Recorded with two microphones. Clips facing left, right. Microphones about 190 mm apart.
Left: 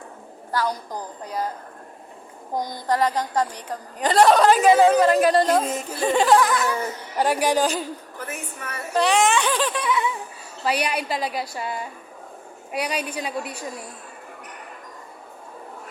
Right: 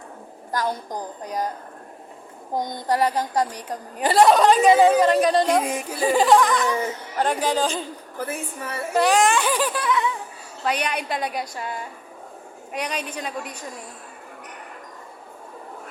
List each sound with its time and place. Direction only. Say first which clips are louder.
0.5 s a woman's voice: even; 20° right (ahead or behind)
2.6 s a woman's voice: even; 20° right (ahead or behind); by 5.5 s 5° left (ahead or behind)
5.5 s a woman's voice: even; 10° right (ahead or behind); by 7.9 s 10° left (ahead or behind)
8.2 s a woman's voice: right 7 dB; 30° right (ahead or behind)
9.0 s a woman's voice: right 1 dB; centre (ahead or behind)
12.7 s a woman's voice: left 2 dB; 10° left (ahead or behind)